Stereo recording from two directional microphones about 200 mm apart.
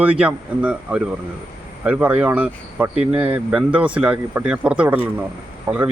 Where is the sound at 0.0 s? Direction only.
5° right (ahead or behind).